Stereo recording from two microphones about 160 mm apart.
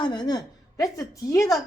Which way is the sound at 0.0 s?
25° left (ahead or behind).